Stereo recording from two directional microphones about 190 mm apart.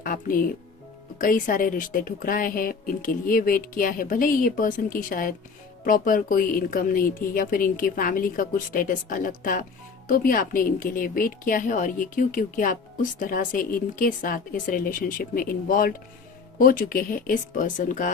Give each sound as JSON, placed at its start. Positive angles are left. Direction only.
{"t": 0.0, "sound": "music", "side_deg": 45}
{"t": 1.2, "sound": "a woman's voice", "side_deg": 45}